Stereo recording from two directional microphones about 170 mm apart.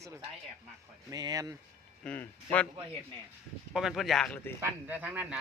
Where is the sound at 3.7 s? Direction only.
Centre (ahead or behind).